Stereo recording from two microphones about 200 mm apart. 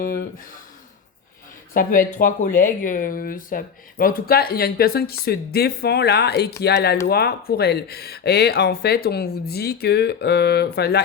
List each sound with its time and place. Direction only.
0.0 s speech: 45° left (ahead or behind)
1.7 s speech: 45° left (ahead or behind)